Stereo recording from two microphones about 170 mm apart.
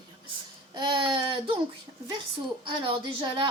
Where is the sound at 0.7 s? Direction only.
25° right (ahead or behind).